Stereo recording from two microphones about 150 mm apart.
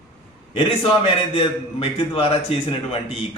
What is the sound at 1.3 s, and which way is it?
A man's voice, 40° left (ahead or behind).